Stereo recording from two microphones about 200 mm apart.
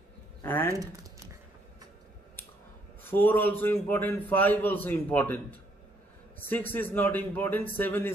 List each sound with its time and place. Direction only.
0.4 s speech: 10° left (ahead or behind)
0.7 s a sound: 15° right (ahead or behind)
3.0 s a man's voice: 10° left (ahead or behind)